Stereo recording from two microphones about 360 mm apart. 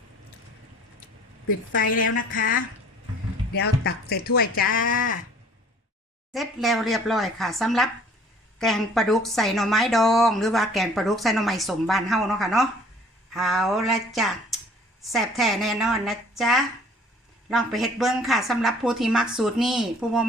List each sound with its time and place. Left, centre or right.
1.5 s speech: left
6.3 s a woman's voice: centre